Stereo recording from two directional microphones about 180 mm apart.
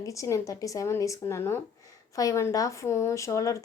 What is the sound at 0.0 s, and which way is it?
Speech, 15° left (ahead or behind).